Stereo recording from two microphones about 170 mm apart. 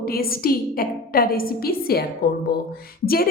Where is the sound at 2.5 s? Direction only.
70° left (ahead or behind).